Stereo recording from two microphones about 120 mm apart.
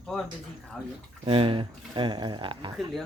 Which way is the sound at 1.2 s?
50° right (ahead or behind).